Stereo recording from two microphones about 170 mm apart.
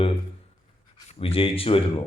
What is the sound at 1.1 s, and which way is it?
Speech, 35° left (ahead or behind).